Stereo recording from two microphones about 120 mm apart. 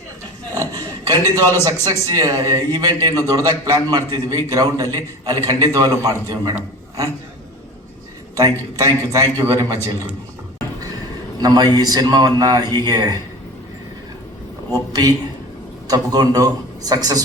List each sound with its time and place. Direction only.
0.5 s a sound: 30° right (ahead or behind)
1.8 s a man's voice: 25° right (ahead or behind)
8.4 s a man's voice: 30° right (ahead or behind)
11.3 s a man's voice: 35° right (ahead or behind)
14.7 s a man's voice: 35° right (ahead or behind)